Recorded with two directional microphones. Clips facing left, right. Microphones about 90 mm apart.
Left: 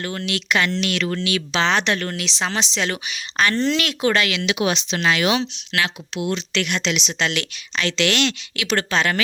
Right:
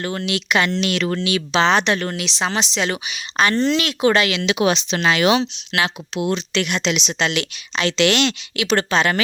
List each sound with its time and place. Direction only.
0.2 s speech: 15° right (ahead or behind)
0.9 s speech: 30° right (ahead or behind)
1.2 s speech: 10° right (ahead or behind)
4.0 s speech: 20° right (ahead or behind)
6.5 s speech: 10° right (ahead or behind)
6.9 s speech: 20° right (ahead or behind)